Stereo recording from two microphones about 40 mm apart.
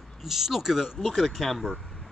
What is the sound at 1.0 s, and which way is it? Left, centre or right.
Speech, centre.